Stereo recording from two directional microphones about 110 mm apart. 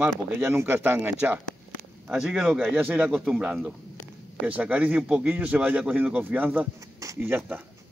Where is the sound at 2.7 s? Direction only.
15° right (ahead or behind).